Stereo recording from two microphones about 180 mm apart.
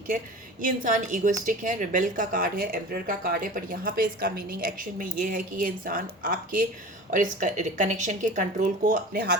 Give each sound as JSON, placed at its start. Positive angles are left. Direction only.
{"t": 0.6, "sound": "a woman's voice", "side_deg": -45}